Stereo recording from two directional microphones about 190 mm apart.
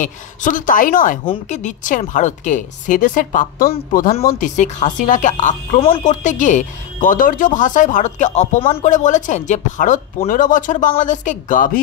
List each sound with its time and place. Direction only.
0.0 s a woman's voice: 45° left (ahead or behind)